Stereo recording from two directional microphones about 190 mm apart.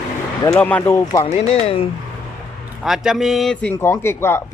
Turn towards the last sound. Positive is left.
turn(degrees=15)  # may be behind; listen again after turning